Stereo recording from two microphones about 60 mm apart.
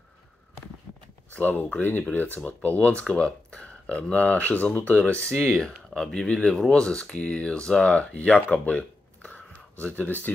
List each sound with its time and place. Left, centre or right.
1.3 s speech: left
5.6 s speech: centre
8.5 s a sound: left